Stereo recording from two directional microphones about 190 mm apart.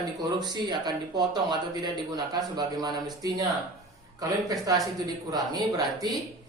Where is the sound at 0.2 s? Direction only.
20° right (ahead or behind).